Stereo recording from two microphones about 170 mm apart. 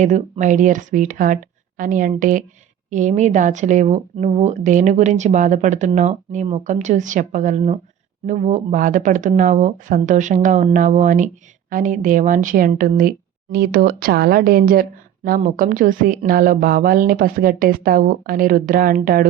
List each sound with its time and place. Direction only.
0.0 s a woman's voice: 45° right (ahead or behind)